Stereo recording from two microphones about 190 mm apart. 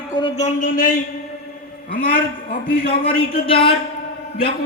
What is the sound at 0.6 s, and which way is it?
A man's voice, 45° left (ahead or behind).